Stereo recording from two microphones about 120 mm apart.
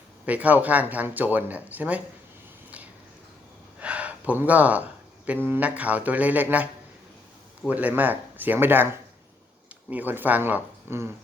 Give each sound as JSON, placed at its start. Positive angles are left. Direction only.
{"t": 0.3, "sound": "speech", "side_deg": -15}
{"t": 3.8, "sound": "a sound", "side_deg": -10}
{"t": 5.5, "sound": "speech", "side_deg": -10}
{"t": 7.7, "sound": "speech", "side_deg": -15}